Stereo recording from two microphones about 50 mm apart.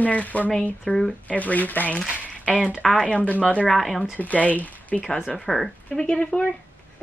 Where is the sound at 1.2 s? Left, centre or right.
Left.